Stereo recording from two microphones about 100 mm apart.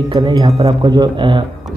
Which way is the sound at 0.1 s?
40° right (ahead or behind).